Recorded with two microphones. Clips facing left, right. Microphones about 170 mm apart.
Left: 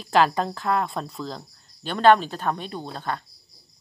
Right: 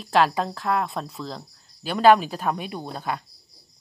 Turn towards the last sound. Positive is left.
turn(degrees=-10)  # may be behind; listen again after turning